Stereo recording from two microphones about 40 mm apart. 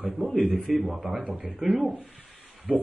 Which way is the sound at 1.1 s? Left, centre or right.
Right.